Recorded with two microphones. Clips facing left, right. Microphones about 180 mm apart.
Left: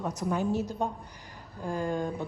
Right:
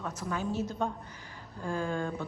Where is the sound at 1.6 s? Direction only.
15° left (ahead or behind).